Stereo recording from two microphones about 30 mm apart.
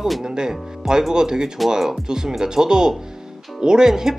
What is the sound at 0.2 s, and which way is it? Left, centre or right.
Speech, right.